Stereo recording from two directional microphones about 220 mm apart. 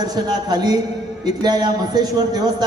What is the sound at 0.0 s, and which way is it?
A man's voice, 20° right (ahead or behind).